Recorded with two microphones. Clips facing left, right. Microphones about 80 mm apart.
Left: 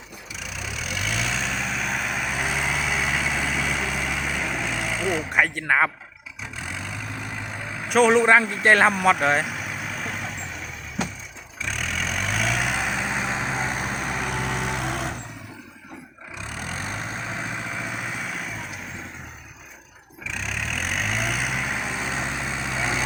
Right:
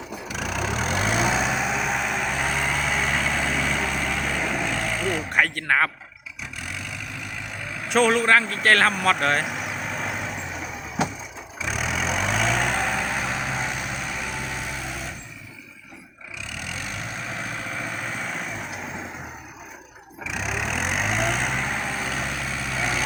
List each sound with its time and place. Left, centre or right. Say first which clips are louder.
0.3 s vehicle: right 7 dB; right; by 5.9 s centre
6.6 s vehicle: left 2 dB; left
7.9 s speech: left 2 dB; centre
9.6 s vehicle: right 2 dB; centre
11.6 s vehicle: right 2 dB; centre; by 15.1 s left
16.5 s vehicle: left 2 dB; left; by 18.4 s centre
20.2 s vehicle: right 3 dB; centre; by 23.0 s left